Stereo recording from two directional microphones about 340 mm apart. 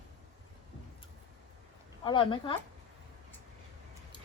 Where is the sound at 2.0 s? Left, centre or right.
Centre.